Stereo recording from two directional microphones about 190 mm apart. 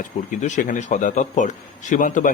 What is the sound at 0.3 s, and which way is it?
Speech, 40° left (ahead or behind).